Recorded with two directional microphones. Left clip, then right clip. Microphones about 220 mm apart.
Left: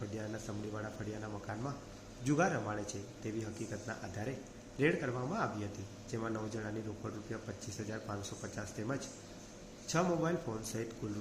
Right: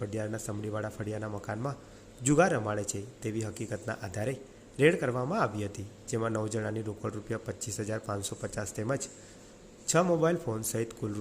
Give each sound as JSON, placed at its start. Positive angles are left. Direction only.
{"t": 0.2, "sound": "speech", "side_deg": -50}